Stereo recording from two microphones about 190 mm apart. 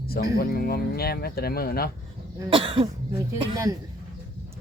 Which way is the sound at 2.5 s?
30° right (ahead or behind).